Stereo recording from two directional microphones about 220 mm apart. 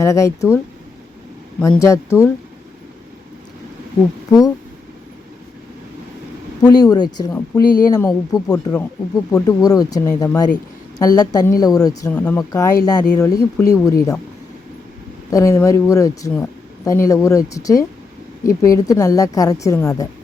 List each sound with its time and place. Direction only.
0.0 s speech: 15° left (ahead or behind)
4.3 s speech: 15° left (ahead or behind)
6.6 s speech: 15° left (ahead or behind)
12.1 s speech: 5° left (ahead or behind)
12.4 s speech: 15° left (ahead or behind)
15.3 s speech: 15° left (ahead or behind)